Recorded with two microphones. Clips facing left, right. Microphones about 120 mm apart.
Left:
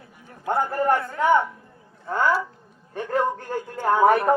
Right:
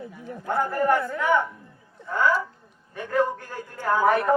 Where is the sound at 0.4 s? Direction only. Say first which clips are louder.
Left 1 dB; 35° left (ahead or behind).